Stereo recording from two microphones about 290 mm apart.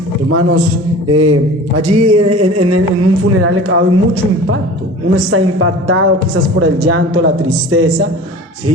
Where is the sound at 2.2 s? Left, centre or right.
Right.